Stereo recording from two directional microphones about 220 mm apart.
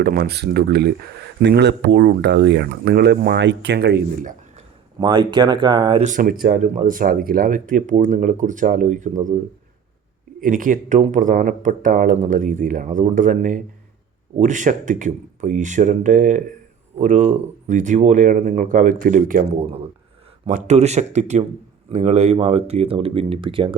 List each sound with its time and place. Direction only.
0.0 s speech: 45° right (ahead or behind)
4.9 s speech: 20° right (ahead or behind)
6.1 s speech: 35° right (ahead or behind)
10.4 s speech: 40° right (ahead or behind)